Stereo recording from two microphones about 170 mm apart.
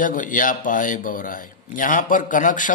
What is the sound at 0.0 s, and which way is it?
A man's voice, 50° left (ahead or behind).